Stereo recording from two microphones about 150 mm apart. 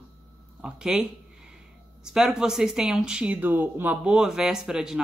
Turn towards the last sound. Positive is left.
turn(degrees=-5)  # may be behind; listen again after turning